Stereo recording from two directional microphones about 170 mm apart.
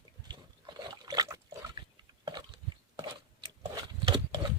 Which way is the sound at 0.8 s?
20° right (ahead or behind).